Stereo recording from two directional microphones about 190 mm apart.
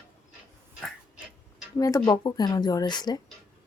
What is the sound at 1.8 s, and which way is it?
Speech, 20° left (ahead or behind).